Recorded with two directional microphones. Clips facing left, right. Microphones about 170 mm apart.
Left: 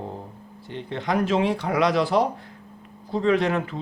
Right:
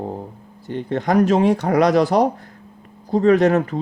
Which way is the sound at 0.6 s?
45° right (ahead or behind).